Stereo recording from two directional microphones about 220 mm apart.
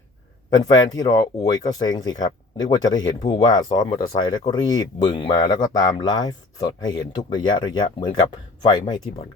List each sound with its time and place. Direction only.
0.5 s speech: 15° left (ahead or behind)